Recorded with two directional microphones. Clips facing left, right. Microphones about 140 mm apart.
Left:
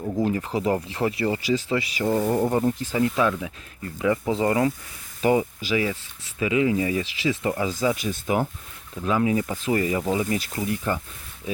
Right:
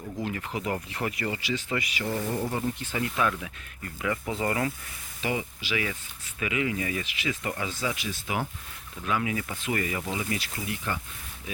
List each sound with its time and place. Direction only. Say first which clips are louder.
0.0 s speech: left 9 dB; 40° left (ahead or behind)
3.2 s speech: left 5 dB; 20° left (ahead or behind)
5.2 s speech: left 10 dB; 45° left (ahead or behind)
6.4 s speech: left 8 dB; 25° left (ahead or behind); by 8.4 s 45° left (ahead or behind)
9.0 s speech: left 7 dB; 30° left (ahead or behind)